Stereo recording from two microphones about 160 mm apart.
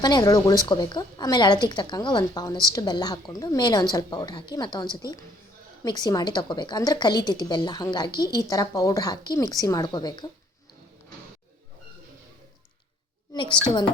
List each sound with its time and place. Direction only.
0.0 s speech: 25° left (ahead or behind)
13.3 s speech: 30° left (ahead or behind)